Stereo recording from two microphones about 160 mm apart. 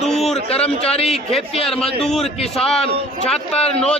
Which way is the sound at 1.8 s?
Centre (ahead or behind).